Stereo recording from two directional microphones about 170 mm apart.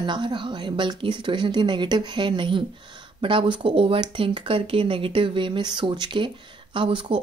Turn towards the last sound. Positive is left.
turn(degrees=-30)  # may be behind; listen again after turning